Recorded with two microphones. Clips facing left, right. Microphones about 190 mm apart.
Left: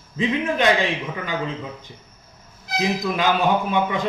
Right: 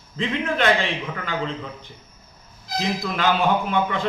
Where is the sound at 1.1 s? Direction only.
10° left (ahead or behind).